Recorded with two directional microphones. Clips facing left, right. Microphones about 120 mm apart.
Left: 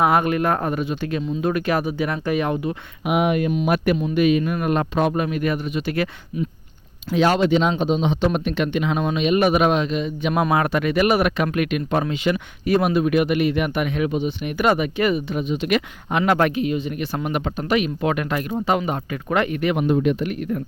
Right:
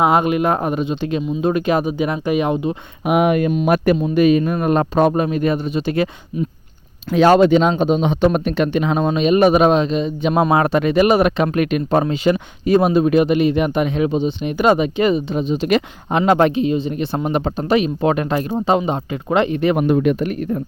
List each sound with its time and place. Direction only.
0.0 s speech: 20° right (ahead or behind)
3.1 s speech: 50° right (ahead or behind)
3.5 s speech: 35° right (ahead or behind)
7.1 s speech: 45° right (ahead or behind); by 19.7 s 25° right (ahead or behind)
19.9 s a man's voice: 65° right (ahead or behind)
20.1 s speech: 40° right (ahead or behind)